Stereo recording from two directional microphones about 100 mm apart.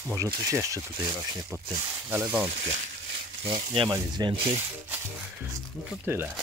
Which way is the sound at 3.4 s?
65° right (ahead or behind).